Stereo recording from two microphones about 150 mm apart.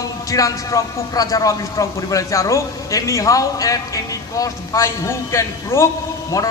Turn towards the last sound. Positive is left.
turn(degrees=20)  # may be behind; listen again after turning